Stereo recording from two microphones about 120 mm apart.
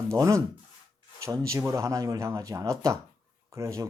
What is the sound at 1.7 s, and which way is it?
Speech, 25° right (ahead or behind).